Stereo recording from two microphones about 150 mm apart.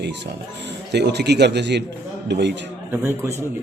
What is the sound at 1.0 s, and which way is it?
Speech, 90° right.